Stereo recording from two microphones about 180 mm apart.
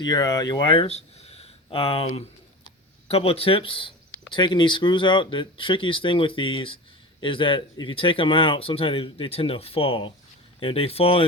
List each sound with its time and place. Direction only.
0.0 s speech: 25° left (ahead or behind)
3.1 s speech: 35° left (ahead or behind)